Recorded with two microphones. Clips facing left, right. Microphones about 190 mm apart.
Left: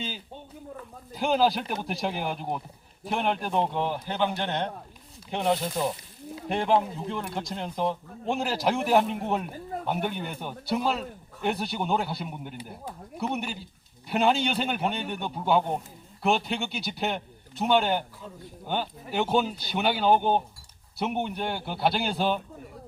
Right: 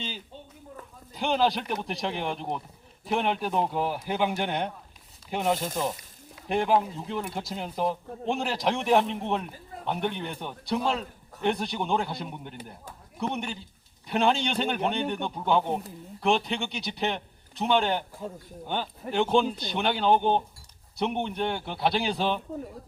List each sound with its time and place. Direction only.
1.1 s a man's voice: centre (ahead or behind)
18.2 s speech: 50° right (ahead or behind)
18.7 s a man's voice: 5° left (ahead or behind)